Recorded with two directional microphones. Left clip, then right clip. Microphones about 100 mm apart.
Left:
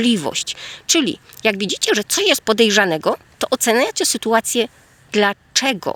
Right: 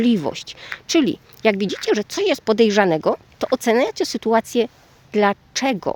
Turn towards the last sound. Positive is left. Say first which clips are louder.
# left 3 dB
turn(degrees=-20)  # may be behind; listen again after turning